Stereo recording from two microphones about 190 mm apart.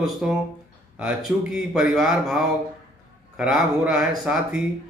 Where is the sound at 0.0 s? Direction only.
Centre (ahead or behind).